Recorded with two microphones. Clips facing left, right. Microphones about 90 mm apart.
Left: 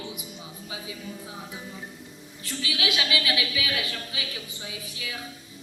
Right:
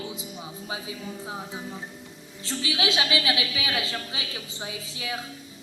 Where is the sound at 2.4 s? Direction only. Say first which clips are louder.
Right 3 dB; 25° right (ahead or behind).